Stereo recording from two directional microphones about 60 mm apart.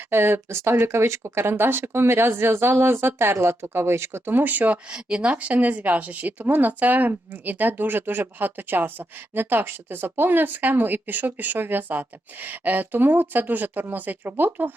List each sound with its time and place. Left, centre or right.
0.1 s speech: right
4.9 s speech: centre; by 14.7 s right